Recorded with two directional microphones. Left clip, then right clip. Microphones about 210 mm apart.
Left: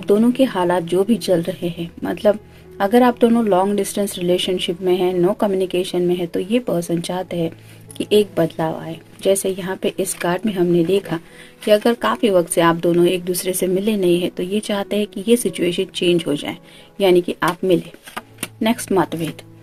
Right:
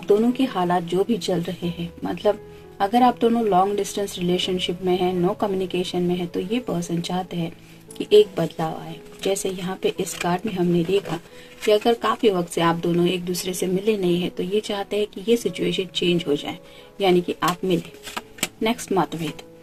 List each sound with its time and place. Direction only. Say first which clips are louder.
0.0 s speech: left 4 dB; 45° left (ahead or behind)
11.7 s speech: left 3 dB; 50° left (ahead or behind)